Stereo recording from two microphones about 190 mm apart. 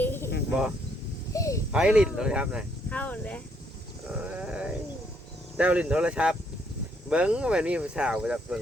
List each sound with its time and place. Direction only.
0.0 s snake: 10° left (ahead or behind)
1.3 s a sound: 15° left (ahead or behind)
1.7 s speech: 5° right (ahead or behind)
2.9 s speech: 5° left (ahead or behind)
4.1 s a sound: 5° right (ahead or behind)
5.5 s speech: 5° right (ahead or behind)